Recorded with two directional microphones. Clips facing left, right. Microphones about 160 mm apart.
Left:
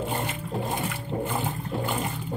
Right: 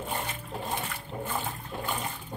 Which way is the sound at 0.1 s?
20° left (ahead or behind).